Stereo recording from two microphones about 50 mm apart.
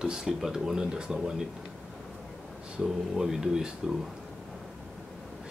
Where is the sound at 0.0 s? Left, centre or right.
Centre.